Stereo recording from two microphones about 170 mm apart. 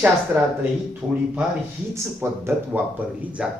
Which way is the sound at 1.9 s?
15° right (ahead or behind).